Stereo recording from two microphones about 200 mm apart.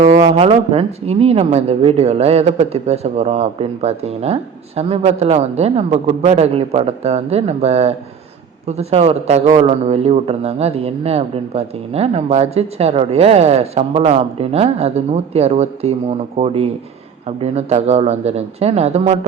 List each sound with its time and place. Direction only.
0.0 s a man's voice: 30° right (ahead or behind)